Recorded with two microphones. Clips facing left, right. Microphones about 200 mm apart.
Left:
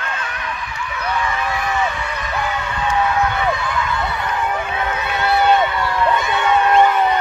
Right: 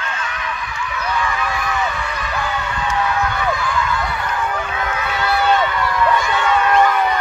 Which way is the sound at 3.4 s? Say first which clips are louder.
Even; 25° left (ahead or behind).